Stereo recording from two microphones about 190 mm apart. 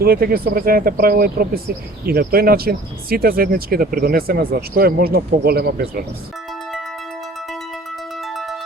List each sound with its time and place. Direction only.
0.0 s speech: 50° right (ahead or behind)
8.2 s music: centre (ahead or behind)